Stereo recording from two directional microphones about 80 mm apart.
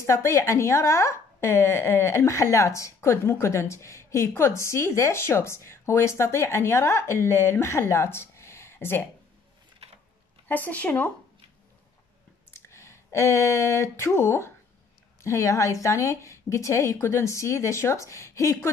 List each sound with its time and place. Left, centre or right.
0.0 s speech: left
10.5 s speech: centre
12.4 s a sound: left
15.2 s speech: left